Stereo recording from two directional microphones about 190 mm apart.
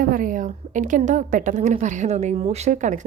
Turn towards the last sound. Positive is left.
turn(degrees=-40)  # may be behind; listen again after turning